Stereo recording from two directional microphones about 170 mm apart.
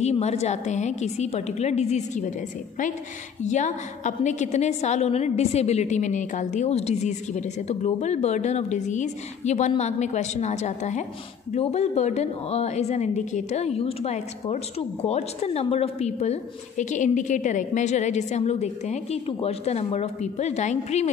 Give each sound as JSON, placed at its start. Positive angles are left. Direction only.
{"t": 0.0, "sound": "a woman's voice", "side_deg": 40}
{"t": 3.4, "sound": "a woman's voice", "side_deg": 45}